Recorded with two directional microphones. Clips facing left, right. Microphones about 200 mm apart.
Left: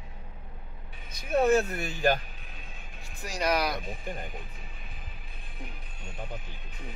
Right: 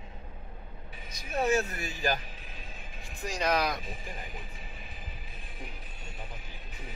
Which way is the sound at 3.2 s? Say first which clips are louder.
Left 1 dB; 5° left (ahead or behind).